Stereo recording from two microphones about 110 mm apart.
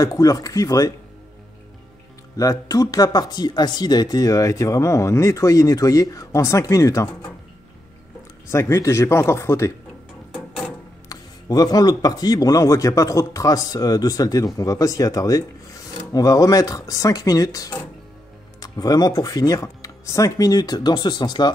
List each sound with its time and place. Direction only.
0.0 s speech: 30° left (ahead or behind)
2.3 s speech: 30° left (ahead or behind)
8.5 s speech: 25° left (ahead or behind)
11.1 s speech: 35° left (ahead or behind)